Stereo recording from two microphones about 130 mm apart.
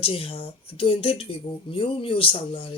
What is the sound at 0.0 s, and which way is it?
Speech, 45° left (ahead or behind).